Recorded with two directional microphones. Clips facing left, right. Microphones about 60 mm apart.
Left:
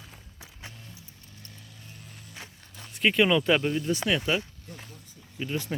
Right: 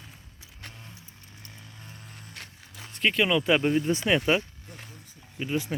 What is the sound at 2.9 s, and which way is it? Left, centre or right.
Speech, centre.